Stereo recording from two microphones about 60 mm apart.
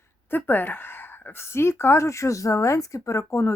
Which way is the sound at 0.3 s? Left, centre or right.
Left.